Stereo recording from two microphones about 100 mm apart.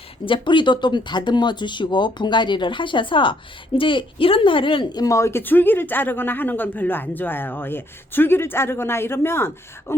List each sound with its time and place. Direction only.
0.3 s speech: 55° left (ahead or behind)
5.1 s speech: 25° left (ahead or behind)